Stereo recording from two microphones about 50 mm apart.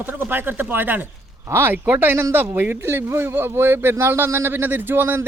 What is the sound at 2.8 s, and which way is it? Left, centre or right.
Speech, right.